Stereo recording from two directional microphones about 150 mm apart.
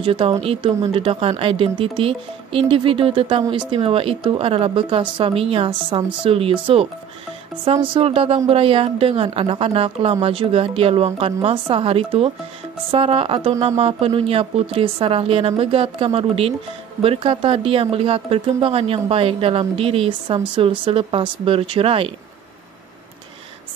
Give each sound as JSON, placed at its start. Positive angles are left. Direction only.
{"t": 0.0, "sound": "speech", "side_deg": -35}